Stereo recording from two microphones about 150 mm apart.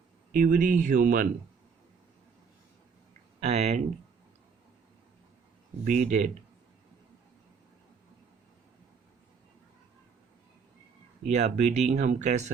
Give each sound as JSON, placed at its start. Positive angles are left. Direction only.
{"t": 0.3, "sound": "speech", "side_deg": -60}
{"t": 3.4, "sound": "speech", "side_deg": -45}
{"t": 5.8, "sound": "speech", "side_deg": -55}
{"t": 11.3, "sound": "speech", "side_deg": -50}